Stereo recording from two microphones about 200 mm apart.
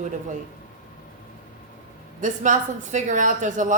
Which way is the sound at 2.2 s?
40° right (ahead or behind).